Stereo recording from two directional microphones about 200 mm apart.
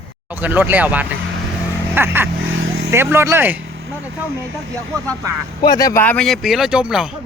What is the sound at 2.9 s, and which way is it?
Speech, 10° right (ahead or behind).